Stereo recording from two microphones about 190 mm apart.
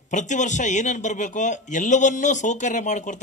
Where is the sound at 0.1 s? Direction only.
40° left (ahead or behind).